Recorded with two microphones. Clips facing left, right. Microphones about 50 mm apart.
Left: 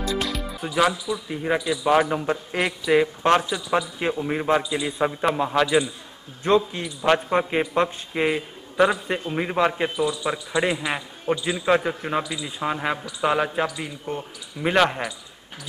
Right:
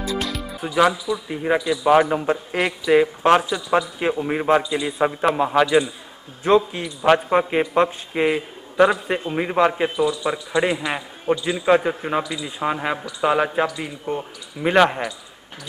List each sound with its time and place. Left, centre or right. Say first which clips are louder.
0.2 s a man's voice: right 1 dB; centre